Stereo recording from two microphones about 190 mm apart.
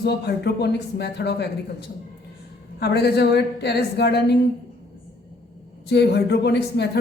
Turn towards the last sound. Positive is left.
turn(degrees=60)  # may be behind; listen again after turning